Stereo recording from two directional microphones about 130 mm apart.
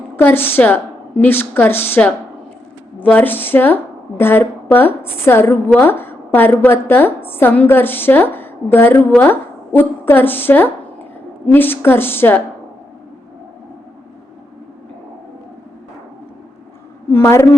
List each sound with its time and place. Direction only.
0.2 s a woman's voice: 15° left (ahead or behind)
17.1 s a woman's voice: 20° left (ahead or behind)